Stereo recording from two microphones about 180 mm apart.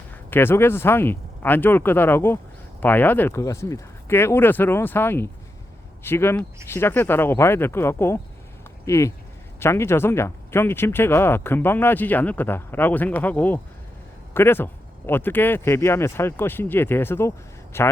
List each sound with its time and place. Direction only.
0.1 s a man's voice: 10° left (ahead or behind)